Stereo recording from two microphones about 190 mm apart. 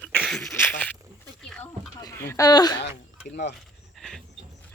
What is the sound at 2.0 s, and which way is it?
Speech, 15° left (ahead or behind).